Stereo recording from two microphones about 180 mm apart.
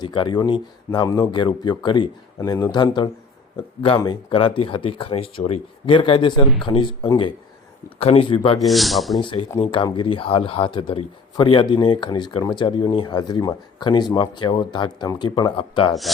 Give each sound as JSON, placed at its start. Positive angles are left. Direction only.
{"t": 0.0, "sound": "speech", "side_deg": 25}
{"t": 8.5, "sound": "speech", "side_deg": 0}
{"t": 9.2, "sound": "speech", "side_deg": 30}